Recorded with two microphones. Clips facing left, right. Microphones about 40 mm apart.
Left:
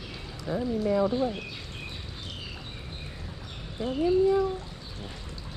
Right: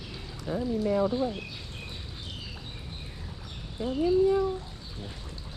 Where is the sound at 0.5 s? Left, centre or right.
Left.